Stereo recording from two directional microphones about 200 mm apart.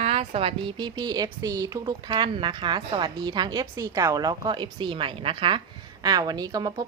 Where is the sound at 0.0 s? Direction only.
30° right (ahead or behind).